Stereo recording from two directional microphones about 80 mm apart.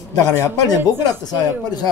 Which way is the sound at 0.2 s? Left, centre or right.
Left.